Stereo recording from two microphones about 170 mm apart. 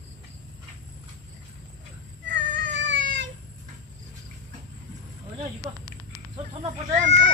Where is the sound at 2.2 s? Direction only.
90° right.